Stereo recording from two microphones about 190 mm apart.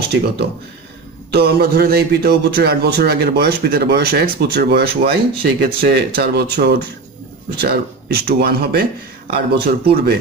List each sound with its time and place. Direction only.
1.3 s a man's voice: 55° right (ahead or behind)